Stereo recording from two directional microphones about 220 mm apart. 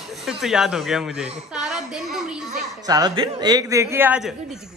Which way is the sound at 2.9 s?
20° right (ahead or behind).